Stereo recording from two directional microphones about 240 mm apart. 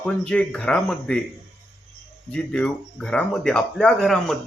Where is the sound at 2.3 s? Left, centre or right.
Centre.